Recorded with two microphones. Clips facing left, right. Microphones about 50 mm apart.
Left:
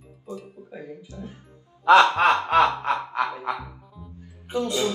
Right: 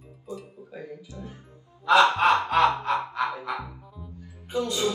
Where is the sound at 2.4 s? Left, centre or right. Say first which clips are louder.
Left 2 dB; left.